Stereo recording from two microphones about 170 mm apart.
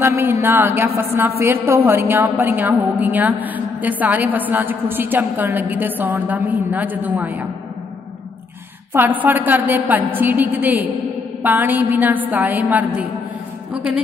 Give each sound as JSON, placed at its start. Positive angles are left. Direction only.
{"t": 0.0, "sound": "a woman's voice", "side_deg": -15}
{"t": 8.9, "sound": "a woman's voice", "side_deg": -10}